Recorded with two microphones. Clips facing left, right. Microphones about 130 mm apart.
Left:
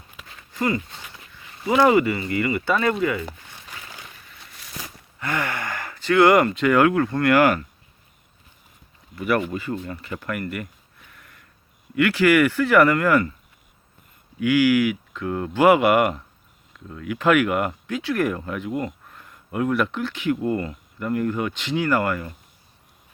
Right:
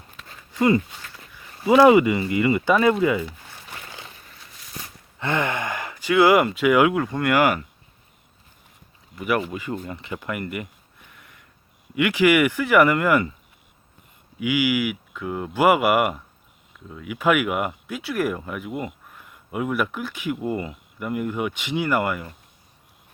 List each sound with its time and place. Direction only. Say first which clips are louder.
1.7 s speech: right 3 dB; 15° right (ahead or behind)
3.7 s a sound: right 1 dB; 25° right (ahead or behind)
5.2 s speech: right 3 dB; 20° right (ahead or behind)
9.1 s speech: left 1 dB; 10° right (ahead or behind)
11.9 s speech: left 1 dB; 15° right (ahead or behind)
14.3 s speech: left 4 dB; 10° right (ahead or behind)